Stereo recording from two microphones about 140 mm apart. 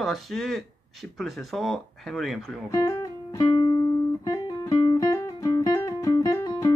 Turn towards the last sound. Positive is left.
turn(degrees=20)  # may be behind; listen again after turning